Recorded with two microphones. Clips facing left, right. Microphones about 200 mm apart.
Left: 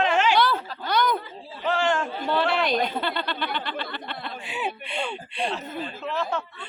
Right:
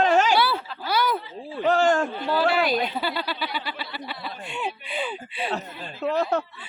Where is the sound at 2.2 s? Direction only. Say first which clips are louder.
Even; 5° right (ahead or behind).